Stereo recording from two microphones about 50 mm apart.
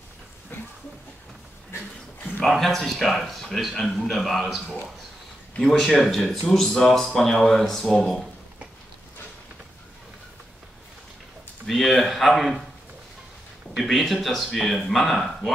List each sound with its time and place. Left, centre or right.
0.5 s a sound: left
2.4 s speech: centre
11.6 s speech: centre
13.8 s speech: centre